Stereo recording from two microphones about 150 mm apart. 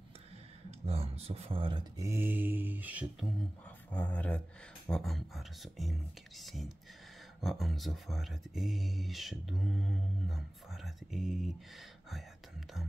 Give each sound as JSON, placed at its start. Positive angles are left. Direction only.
{"t": 0.7, "sound": "speech", "side_deg": -40}
{"t": 2.0, "sound": "mantra", "side_deg": -15}
{"t": 3.9, "sound": "a sound", "side_deg": 10}
{"t": 4.8, "sound": "speech", "side_deg": 5}